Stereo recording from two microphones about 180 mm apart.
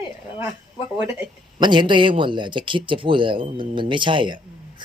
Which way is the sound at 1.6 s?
25° right (ahead or behind).